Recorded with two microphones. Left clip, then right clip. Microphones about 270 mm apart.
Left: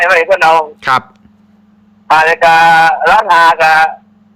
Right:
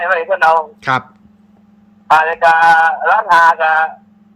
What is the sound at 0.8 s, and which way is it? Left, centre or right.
Speech, centre.